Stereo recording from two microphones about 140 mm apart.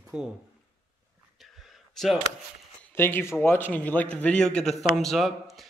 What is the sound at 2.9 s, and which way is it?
A man's voice, 15° left (ahead or behind).